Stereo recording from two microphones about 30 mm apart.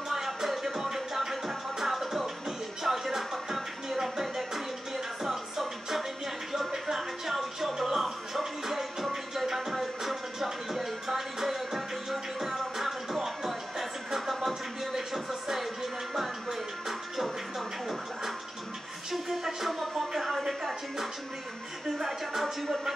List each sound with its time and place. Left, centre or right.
0.1 s music: centre
19.2 s music: centre
20.2 s a sound: centre
21.9 s music: centre